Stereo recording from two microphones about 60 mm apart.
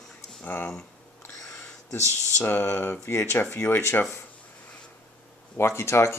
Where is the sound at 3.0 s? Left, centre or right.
Left.